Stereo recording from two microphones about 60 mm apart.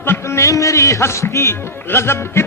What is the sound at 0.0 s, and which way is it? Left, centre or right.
A man's voice, left.